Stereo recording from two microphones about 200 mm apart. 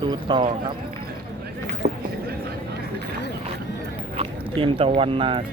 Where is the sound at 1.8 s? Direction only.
45° right (ahead or behind).